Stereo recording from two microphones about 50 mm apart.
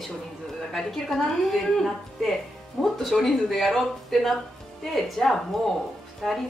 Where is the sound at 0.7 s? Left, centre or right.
Centre.